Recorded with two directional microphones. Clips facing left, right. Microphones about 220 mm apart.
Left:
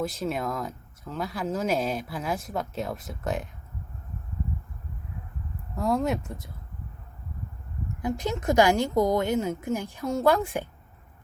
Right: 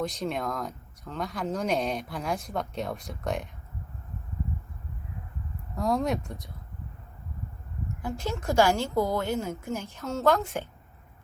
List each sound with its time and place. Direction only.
0.0 s speech: 5° left (ahead or behind)
5.7 s speech: centre (ahead or behind)
8.0 s a woman's voice: 15° left (ahead or behind)